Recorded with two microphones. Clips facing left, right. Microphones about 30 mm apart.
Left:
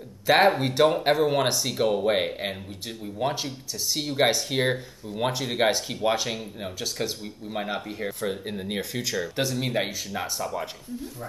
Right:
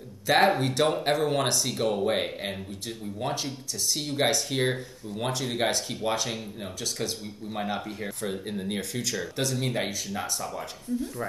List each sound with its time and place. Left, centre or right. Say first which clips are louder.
0.6 s speech: left 3 dB; centre